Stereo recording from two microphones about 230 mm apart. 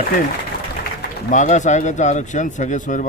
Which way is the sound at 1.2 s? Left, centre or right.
Left.